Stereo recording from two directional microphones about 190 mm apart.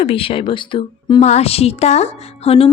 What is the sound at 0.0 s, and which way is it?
A woman's voice, 30° left (ahead or behind).